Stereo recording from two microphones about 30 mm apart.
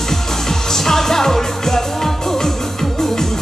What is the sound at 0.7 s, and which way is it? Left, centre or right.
Music, centre.